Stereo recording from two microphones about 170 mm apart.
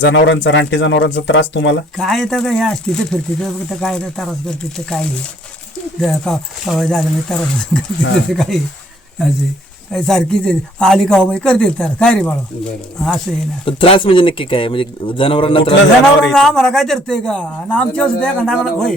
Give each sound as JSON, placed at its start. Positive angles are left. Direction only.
{"t": 0.0, "sound": "speech", "side_deg": 90}
{"t": 2.0, "sound": "speech", "side_deg": 0}
{"t": 9.9, "sound": "speech", "side_deg": 0}
{"t": 13.7, "sound": "speech", "side_deg": 30}
{"t": 16.2, "sound": "speech", "side_deg": 0}